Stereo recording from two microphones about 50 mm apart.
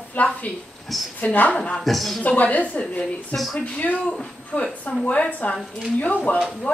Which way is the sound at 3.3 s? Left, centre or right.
Centre.